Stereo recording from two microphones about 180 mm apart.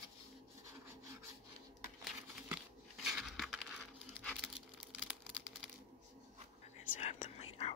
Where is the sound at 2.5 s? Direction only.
Centre (ahead or behind).